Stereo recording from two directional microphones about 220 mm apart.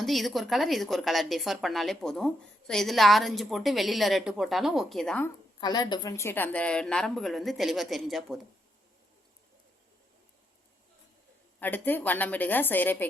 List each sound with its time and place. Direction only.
0.0 s a woman's voice: centre (ahead or behind)
5.5 s a woman's voice: 20° left (ahead or behind); by 8.4 s centre (ahead or behind)
11.6 s a woman's voice: 10° left (ahead or behind)